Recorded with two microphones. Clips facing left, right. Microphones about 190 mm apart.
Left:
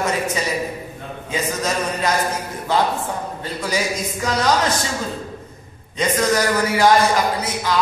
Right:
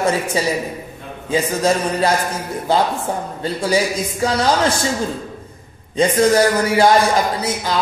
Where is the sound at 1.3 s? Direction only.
30° right (ahead or behind).